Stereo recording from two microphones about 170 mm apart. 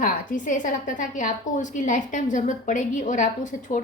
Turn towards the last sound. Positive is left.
turn(degrees=50)  # may be behind; listen again after turning